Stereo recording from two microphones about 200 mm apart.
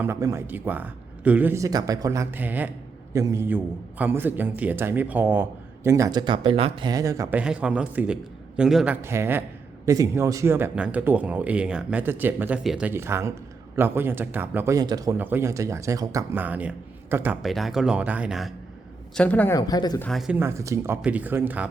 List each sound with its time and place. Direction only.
0.0 s a man's voice: 15° right (ahead or behind); by 19.5 s 5° left (ahead or behind)
19.5 s speech: 20° left (ahead or behind)
20.1 s a man's voice: centre (ahead or behind)